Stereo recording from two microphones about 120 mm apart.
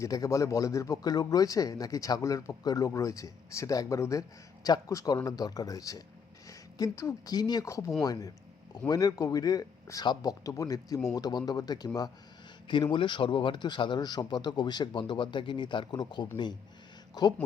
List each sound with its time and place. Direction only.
0.0 s a man's voice: 30° left (ahead or behind)